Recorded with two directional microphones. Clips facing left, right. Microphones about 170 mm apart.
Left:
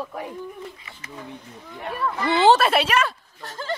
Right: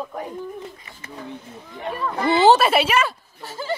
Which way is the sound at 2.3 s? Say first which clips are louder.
Right 2 dB; 5° right (ahead or behind).